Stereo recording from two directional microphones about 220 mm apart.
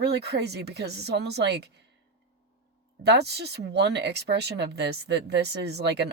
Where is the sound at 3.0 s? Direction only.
50° right (ahead or behind).